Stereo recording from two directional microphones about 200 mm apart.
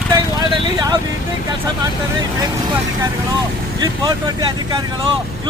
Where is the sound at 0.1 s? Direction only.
20° right (ahead or behind).